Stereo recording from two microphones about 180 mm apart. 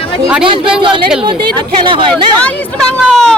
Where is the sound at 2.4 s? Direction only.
5° left (ahead or behind).